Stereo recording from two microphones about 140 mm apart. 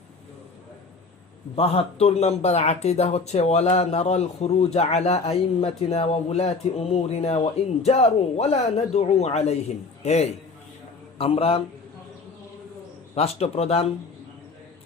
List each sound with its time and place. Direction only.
1.5 s a man's voice: 45° left (ahead or behind)
13.1 s speech: 45° left (ahead or behind)